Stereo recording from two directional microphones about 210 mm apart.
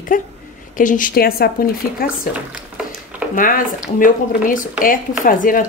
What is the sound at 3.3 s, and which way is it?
Speech, 40° left (ahead or behind).